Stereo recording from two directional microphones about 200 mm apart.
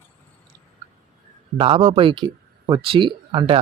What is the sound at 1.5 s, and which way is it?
Speech, 25° right (ahead or behind).